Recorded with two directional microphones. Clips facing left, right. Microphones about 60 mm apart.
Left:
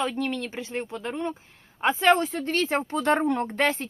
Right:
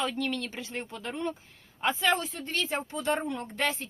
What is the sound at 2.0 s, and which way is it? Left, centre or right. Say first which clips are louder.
Speech: left 10 dB; left.